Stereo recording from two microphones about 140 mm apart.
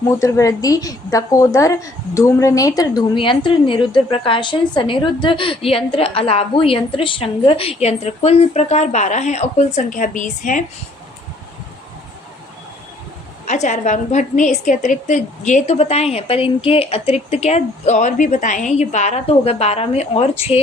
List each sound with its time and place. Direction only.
0.1 s a woman's voice: 20° left (ahead or behind)
3.2 s a woman's voice: 35° left (ahead or behind); by 10.6 s 65° left (ahead or behind)
13.5 s a woman's voice: 60° left (ahead or behind)